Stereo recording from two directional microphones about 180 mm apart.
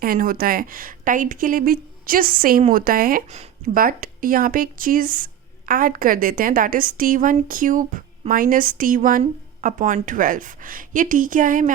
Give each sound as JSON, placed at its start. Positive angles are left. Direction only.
{"t": 0.0, "sound": "speech", "side_deg": -50}